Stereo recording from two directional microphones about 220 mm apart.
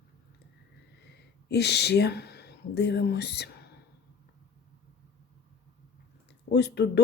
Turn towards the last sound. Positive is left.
turn(degrees=50)  # may be behind; listen again after turning